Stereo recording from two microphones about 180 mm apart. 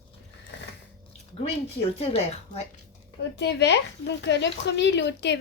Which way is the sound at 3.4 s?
75° left (ahead or behind).